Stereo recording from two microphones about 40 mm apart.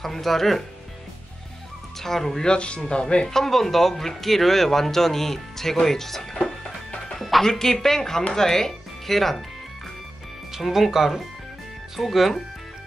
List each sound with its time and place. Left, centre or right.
0.0 s speech: centre
2.0 s speech: centre
2.4 s speech: left
3.3 s speech: centre
7.2 s music: centre
7.4 s speech: centre
10.5 s speech: centre